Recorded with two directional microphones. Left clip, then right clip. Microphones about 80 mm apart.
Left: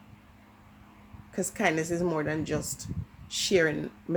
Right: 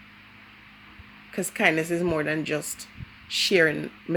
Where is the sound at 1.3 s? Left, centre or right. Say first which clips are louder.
Right 5 dB; right.